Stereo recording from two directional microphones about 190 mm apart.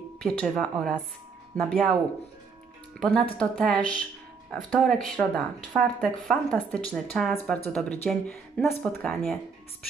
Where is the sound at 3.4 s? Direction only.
5° left (ahead or behind).